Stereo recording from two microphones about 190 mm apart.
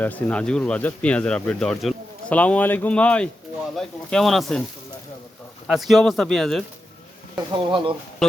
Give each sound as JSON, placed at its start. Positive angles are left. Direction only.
{"t": 0.0, "sound": "speech", "side_deg": 10}
{"t": 5.6, "sound": "speech", "side_deg": 0}
{"t": 7.3, "sound": "speech", "side_deg": -25}
{"t": 8.2, "sound": "speech", "side_deg": 0}